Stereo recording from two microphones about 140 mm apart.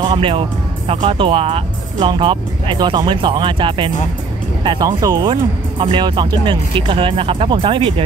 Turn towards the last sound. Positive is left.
turn(degrees=-40)  # may be behind; listen again after turning